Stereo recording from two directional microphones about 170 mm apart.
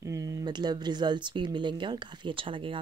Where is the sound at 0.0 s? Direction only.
20° right (ahead or behind).